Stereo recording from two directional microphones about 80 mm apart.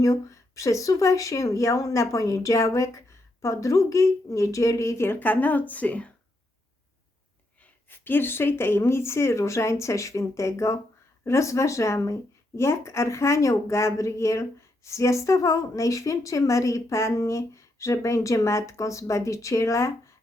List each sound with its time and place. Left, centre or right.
0.0 s speech: left; by 6.1 s centre
7.6 s speech: left